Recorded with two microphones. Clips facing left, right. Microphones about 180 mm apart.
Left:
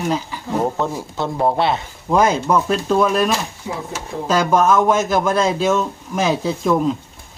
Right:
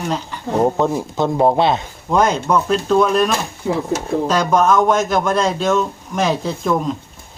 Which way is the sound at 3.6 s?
55° right (ahead or behind).